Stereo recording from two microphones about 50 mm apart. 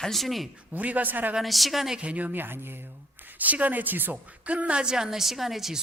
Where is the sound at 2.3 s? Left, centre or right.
Right; by 5.8 s centre.